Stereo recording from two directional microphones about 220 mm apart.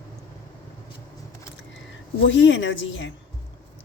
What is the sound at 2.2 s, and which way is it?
Speech, 55° left (ahead or behind).